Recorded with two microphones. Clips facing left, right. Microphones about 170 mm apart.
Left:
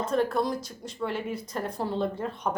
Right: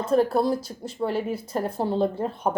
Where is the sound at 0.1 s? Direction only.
35° right (ahead or behind).